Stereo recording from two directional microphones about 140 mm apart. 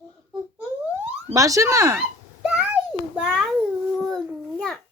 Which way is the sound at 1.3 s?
25° right (ahead or behind).